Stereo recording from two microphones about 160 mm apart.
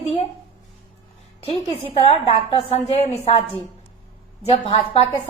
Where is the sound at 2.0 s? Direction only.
35° left (ahead or behind).